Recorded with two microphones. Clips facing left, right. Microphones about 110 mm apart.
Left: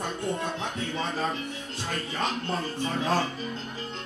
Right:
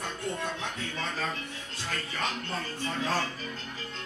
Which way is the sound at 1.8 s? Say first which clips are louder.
Left 3 dB; 20° left (ahead or behind).